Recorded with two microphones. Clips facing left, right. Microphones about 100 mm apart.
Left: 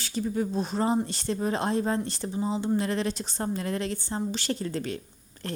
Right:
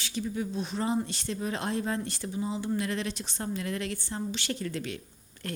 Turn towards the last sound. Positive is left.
turn(degrees=30)  # may be behind; listen again after turning